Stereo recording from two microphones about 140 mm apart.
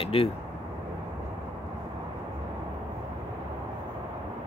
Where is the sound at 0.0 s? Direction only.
40° left (ahead or behind).